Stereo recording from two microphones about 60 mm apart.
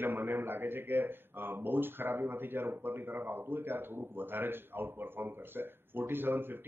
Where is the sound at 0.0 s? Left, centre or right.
Right.